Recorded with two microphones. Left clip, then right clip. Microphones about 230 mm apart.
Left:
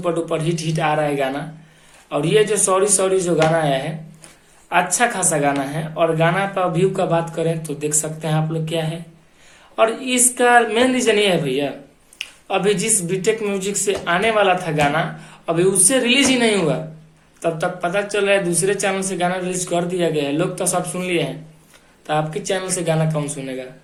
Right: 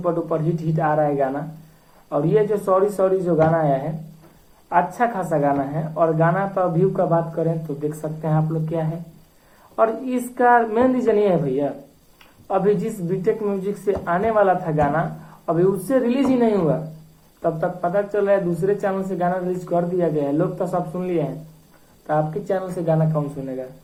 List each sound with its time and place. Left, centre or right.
0.0 s a woman's voice: left